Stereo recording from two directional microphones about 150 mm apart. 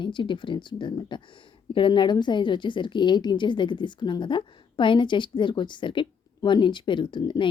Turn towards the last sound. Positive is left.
turn(degrees=30)  # may be behind; listen again after turning